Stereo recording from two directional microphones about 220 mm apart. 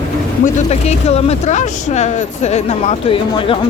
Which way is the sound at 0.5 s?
30° left (ahead or behind).